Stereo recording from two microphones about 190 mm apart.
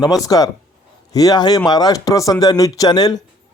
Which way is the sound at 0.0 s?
20° left (ahead or behind).